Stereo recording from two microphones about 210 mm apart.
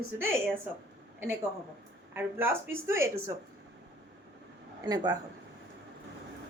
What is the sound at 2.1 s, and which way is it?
A woman's voice, 10° right (ahead or behind).